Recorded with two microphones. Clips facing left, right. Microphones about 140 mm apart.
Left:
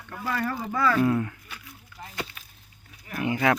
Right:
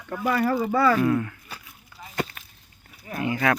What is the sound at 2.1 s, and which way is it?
Chop, 45° right (ahead or behind).